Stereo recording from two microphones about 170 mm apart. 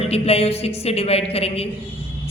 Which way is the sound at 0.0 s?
35° left (ahead or behind).